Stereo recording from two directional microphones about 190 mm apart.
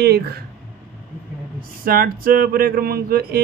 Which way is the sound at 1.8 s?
50° right (ahead or behind).